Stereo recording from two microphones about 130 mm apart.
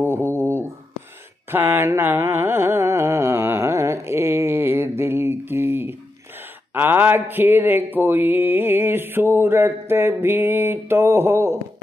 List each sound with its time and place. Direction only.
0.0 s a sound: 20° right (ahead or behind)
1.5 s music: 15° right (ahead or behind)
6.7 s mantra: 15° right (ahead or behind)